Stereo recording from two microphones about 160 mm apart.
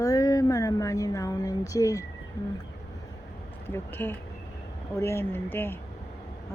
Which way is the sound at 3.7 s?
15° left (ahead or behind).